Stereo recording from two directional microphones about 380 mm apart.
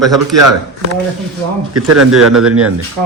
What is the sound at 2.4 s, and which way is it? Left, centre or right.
Speech, right.